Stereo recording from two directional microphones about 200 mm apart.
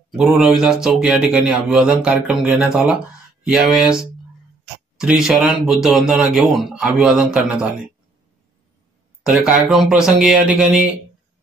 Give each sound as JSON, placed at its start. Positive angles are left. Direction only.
{"t": 0.1, "sound": "speech", "side_deg": 0}
{"t": 9.2, "sound": "speech", "side_deg": -5}